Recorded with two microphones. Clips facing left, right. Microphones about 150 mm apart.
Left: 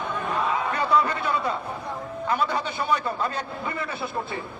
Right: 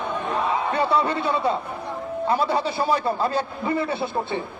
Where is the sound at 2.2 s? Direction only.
30° right (ahead or behind).